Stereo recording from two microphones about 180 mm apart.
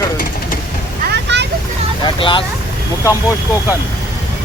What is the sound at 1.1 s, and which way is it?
Vehicle, 70° right (ahead or behind).